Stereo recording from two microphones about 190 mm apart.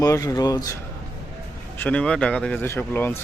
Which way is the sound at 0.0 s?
15° left (ahead or behind).